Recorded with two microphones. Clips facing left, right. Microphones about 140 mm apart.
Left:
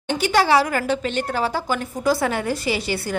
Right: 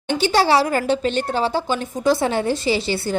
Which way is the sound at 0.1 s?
30° right (ahead or behind).